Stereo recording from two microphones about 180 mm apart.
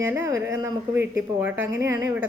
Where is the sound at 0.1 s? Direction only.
15° right (ahead or behind).